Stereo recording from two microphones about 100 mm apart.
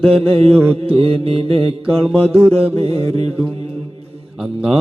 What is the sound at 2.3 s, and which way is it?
Mantra, 25° right (ahead or behind).